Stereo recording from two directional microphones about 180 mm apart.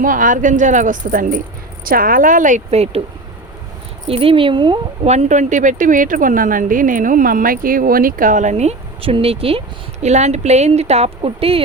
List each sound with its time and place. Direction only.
0.0 s speech: 50° right (ahead or behind)
4.0 s speech: 30° right (ahead or behind)
5.0 s speech: 40° right (ahead or behind)